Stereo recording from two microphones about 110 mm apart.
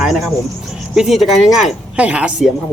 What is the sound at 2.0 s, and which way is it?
Speech, 10° right (ahead or behind).